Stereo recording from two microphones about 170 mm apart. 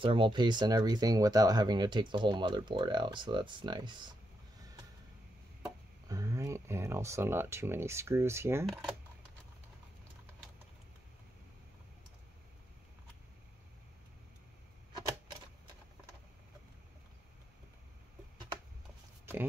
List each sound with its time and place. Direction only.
0.0 s speech: 30° right (ahead or behind)
6.0 s speech: 20° right (ahead or behind)